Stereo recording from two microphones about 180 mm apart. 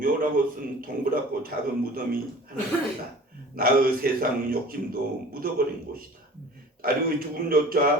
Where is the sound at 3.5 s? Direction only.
55° right (ahead or behind).